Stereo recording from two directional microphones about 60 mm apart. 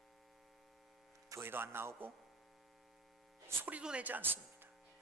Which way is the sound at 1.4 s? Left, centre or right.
Right.